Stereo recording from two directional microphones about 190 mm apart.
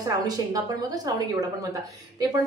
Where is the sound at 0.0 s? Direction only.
20° right (ahead or behind).